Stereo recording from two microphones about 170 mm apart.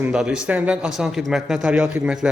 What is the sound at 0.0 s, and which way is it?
A man's voice, 5° right (ahead or behind).